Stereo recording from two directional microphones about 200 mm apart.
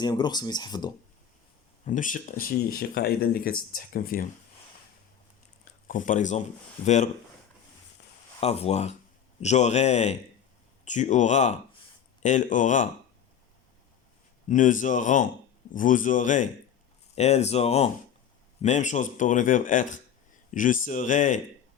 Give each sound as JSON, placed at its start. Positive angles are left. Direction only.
{"t": 0.0, "sound": "speech", "side_deg": 20}
{"t": 1.8, "sound": "speech", "side_deg": 40}
{"t": 5.9, "sound": "speech", "side_deg": 40}
{"t": 8.4, "sound": "speech", "side_deg": 30}
{"t": 14.4, "sound": "speech", "side_deg": 40}